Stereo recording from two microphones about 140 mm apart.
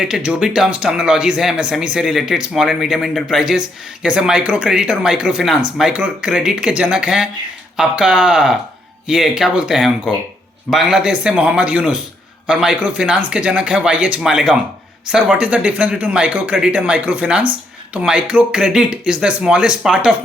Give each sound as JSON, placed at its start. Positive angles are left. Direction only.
{"t": 0.0, "sound": "speech", "side_deg": -5}